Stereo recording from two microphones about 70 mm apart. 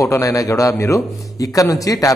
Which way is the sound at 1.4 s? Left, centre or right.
Left.